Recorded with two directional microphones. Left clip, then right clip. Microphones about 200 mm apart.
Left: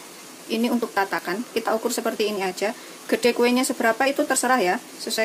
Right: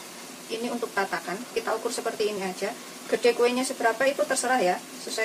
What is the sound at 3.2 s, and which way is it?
Speech, 50° left (ahead or behind).